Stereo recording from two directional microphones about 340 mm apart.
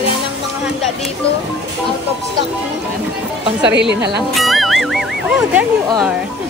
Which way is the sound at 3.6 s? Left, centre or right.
Right.